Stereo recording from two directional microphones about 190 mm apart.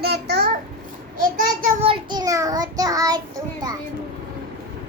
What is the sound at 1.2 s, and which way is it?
Child singing, 50° right (ahead or behind).